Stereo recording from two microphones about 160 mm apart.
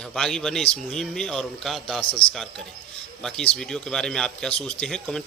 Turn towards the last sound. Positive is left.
turn(degrees=5)  # may be behind; listen again after turning